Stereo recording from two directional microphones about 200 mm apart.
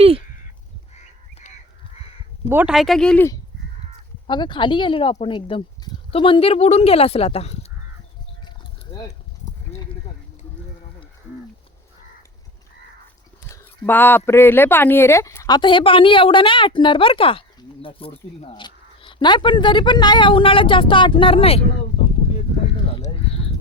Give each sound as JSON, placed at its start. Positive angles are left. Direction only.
{"t": 2.5, "sound": "speech", "side_deg": -5}
{"t": 4.3, "sound": "speech", "side_deg": 25}
{"t": 13.5, "sound": "speech", "side_deg": 10}
{"t": 23.0, "sound": "a sound", "side_deg": 30}